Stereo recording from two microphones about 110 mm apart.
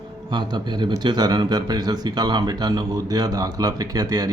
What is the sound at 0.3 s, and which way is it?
Speech, 40° right (ahead or behind).